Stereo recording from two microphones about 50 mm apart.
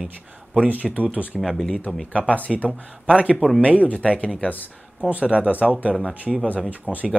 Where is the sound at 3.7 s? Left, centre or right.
Left.